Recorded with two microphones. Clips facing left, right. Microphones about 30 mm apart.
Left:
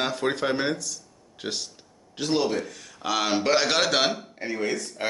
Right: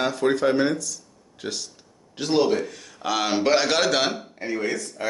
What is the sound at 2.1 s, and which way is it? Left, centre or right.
Speech, centre.